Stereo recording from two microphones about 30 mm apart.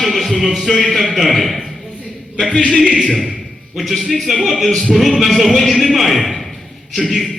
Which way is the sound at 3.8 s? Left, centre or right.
Centre.